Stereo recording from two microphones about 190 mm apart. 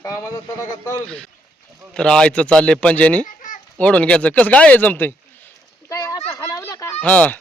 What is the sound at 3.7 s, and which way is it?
Speech, 5° left (ahead or behind).